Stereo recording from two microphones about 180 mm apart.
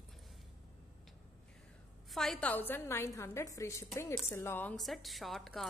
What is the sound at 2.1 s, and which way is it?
A woman's voice, centre (ahead or behind).